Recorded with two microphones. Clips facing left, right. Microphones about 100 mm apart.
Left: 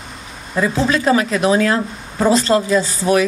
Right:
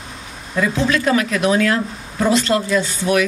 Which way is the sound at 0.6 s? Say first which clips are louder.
Left 1 dB; 35° left (ahead or behind).